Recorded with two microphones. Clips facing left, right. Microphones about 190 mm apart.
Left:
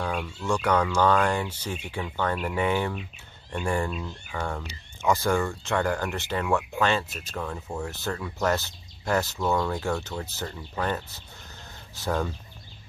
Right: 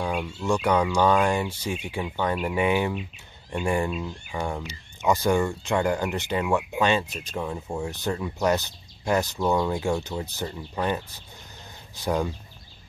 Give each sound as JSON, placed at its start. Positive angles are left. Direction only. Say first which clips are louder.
{"t": 0.0, "sound": "speech", "louder": "right 2 dB", "side_deg": -15}